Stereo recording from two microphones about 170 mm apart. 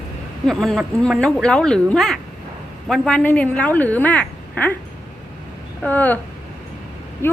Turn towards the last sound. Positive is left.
turn(degrees=15)  # may be behind; listen again after turning